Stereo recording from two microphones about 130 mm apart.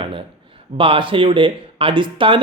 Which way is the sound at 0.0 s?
45° right (ahead or behind).